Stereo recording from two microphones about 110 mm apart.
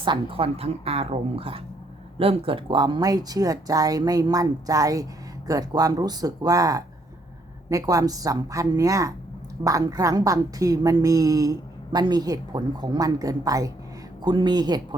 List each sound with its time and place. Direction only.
0.0 s a woman's voice: 50° right (ahead or behind)